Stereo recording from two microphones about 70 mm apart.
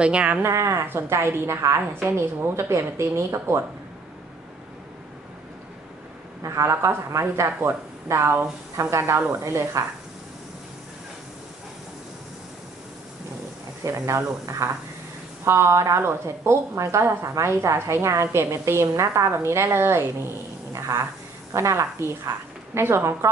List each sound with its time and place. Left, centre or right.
0.0 s speech: centre
0.4 s a woman's voice: right
6.4 s a woman's voice: right
13.8 s a woman's voice: right
20.7 s cat: right
21.5 s a woman's voice: right